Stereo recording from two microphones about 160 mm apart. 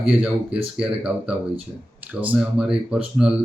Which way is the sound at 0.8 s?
5° right (ahead or behind).